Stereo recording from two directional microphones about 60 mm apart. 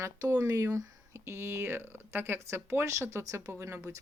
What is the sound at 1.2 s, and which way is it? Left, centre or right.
Speech, right.